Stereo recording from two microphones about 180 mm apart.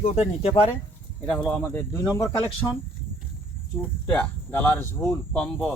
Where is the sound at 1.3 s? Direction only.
10° left (ahead or behind).